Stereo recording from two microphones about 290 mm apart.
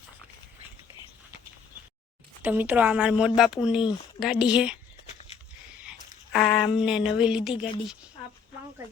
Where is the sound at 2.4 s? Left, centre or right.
Centre.